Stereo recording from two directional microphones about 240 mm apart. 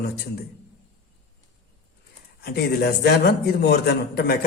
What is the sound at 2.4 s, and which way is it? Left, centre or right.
A man's voice, left.